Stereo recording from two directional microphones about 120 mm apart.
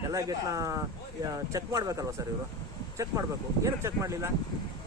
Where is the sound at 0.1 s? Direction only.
30° right (ahead or behind).